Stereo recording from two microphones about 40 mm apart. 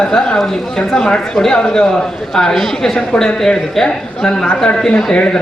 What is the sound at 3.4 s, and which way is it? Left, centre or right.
A man's voice, centre.